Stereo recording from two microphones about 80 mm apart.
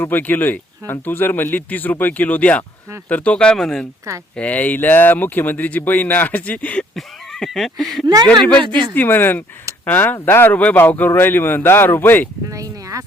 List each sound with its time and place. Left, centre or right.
0.0 s speech: left; by 3.8 s centre
4.4 s speech: centre
6.9 s a sound: centre
8.0 s speech: right
8.3 s speech: centre
8.6 s speech: right
9.0 s speech: left
12.5 s a sound: right